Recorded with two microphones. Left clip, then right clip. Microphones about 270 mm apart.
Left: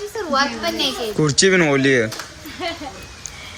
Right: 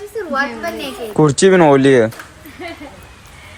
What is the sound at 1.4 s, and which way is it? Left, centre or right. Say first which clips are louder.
Speech: right 5 dB; centre.